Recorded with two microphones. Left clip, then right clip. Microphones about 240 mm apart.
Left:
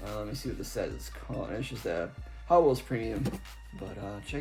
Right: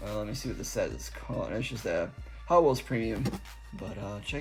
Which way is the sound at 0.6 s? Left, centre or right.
Right.